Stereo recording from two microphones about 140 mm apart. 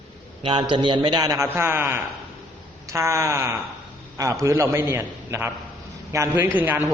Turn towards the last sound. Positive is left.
turn(degrees=-10)  # may be behind; listen again after turning